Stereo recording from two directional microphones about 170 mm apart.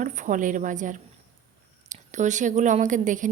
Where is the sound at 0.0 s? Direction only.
50° right (ahead or behind).